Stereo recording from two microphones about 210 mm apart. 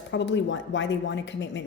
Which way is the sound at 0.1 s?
60° left (ahead or behind).